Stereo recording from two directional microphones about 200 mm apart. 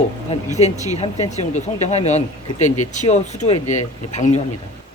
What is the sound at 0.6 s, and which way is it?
Speech, 35° left (ahead or behind).